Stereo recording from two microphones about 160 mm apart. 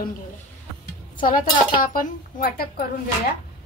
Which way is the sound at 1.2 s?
60° left (ahead or behind).